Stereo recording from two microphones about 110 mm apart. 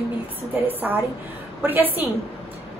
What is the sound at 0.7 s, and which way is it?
A woman's voice, 15° right (ahead or behind).